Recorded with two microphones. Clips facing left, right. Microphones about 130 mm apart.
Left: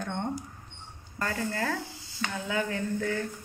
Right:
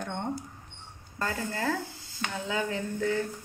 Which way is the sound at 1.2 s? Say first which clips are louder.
Even; 20° right (ahead or behind).